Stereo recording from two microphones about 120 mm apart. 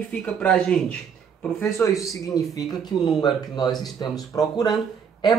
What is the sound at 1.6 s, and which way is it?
A man's voice, 25° left (ahead or behind).